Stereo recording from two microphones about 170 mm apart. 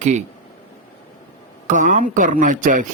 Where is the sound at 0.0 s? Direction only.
45° right (ahead or behind).